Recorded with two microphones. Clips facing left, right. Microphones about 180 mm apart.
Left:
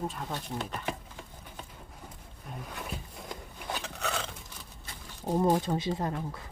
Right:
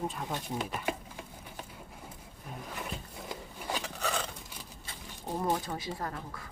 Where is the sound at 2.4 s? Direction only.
5° right (ahead or behind).